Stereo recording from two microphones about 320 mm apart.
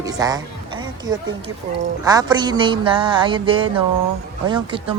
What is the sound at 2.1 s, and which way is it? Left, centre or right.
Music, centre.